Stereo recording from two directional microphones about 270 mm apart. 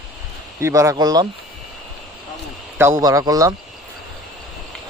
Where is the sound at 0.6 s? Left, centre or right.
Centre.